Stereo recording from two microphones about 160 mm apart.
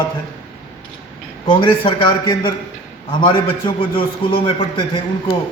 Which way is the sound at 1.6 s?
30° left (ahead or behind).